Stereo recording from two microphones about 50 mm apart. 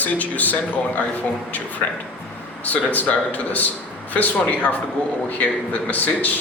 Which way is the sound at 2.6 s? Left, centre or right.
Left.